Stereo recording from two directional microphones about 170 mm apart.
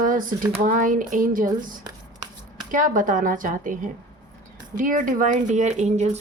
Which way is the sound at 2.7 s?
50° right (ahead or behind).